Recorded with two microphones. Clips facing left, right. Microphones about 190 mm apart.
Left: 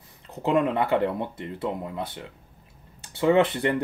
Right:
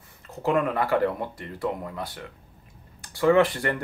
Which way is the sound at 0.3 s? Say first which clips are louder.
Left 1 dB; 20° left (ahead or behind).